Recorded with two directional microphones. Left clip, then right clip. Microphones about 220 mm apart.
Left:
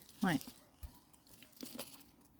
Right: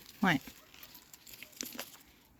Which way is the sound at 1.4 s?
5° left (ahead or behind).